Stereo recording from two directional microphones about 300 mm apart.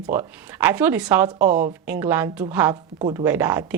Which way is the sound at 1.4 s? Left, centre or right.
Right.